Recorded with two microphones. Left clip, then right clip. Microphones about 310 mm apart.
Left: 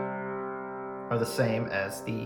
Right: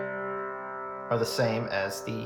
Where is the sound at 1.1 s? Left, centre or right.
Centre.